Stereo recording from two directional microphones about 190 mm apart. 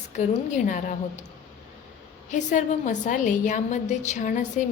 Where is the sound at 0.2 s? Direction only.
40° left (ahead or behind).